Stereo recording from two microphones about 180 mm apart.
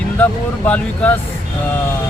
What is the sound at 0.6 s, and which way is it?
Speech, 5° left (ahead or behind).